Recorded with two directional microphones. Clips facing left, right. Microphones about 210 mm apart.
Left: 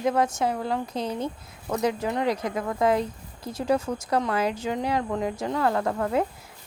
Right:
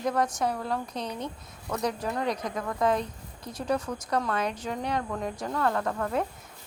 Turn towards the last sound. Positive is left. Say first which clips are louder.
# left 4 dB
turn(degrees=25)  # may be behind; listen again after turning